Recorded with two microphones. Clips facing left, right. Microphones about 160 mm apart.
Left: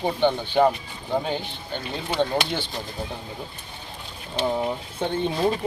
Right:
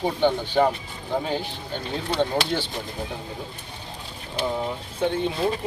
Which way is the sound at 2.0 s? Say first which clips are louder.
Even; 5° left (ahead or behind).